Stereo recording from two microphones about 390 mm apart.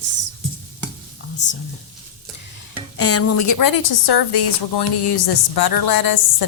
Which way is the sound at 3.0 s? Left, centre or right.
Left.